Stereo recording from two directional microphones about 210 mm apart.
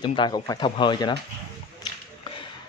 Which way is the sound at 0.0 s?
20° left (ahead or behind).